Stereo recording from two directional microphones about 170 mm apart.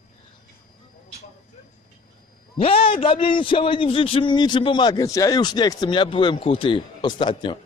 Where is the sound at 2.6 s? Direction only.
35° left (ahead or behind).